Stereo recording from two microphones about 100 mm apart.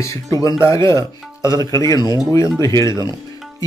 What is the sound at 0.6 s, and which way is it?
Chopping, 30° left (ahead or behind).